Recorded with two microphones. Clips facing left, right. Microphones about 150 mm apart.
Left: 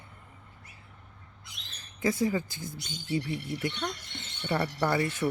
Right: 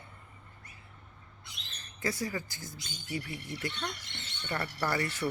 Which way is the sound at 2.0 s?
20° left (ahead or behind).